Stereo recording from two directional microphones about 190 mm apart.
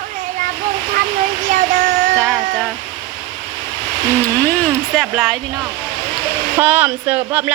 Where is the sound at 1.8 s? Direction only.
40° right (ahead or behind).